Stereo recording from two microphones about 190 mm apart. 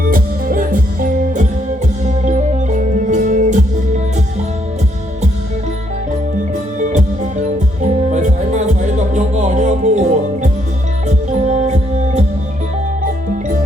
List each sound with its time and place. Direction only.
0.0 s music: 50° right (ahead or behind)
6.7 s music: 40° right (ahead or behind)
11.4 s music: 40° right (ahead or behind)